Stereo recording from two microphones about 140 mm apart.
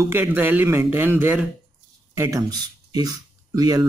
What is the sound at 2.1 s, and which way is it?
Speech, 25° right (ahead or behind).